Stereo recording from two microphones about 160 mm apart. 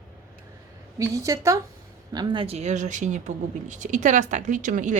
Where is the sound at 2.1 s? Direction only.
30° right (ahead or behind).